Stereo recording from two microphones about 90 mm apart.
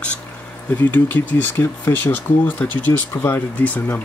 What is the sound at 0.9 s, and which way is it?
Speech, 20° left (ahead or behind).